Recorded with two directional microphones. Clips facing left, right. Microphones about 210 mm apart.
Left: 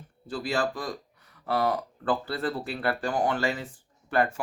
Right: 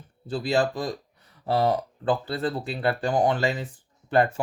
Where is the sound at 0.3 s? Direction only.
20° right (ahead or behind).